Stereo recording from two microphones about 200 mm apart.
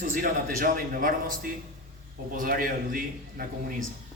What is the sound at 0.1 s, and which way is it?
A man's voice, 45° right (ahead or behind).